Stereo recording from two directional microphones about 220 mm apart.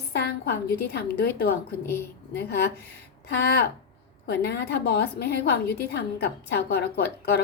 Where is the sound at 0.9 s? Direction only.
45° left (ahead or behind).